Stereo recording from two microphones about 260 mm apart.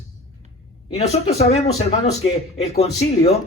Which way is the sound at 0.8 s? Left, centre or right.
Left.